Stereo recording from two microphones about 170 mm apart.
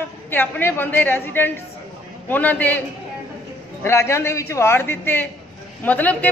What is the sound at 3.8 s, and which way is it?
A woman's voice, 15° left (ahead or behind).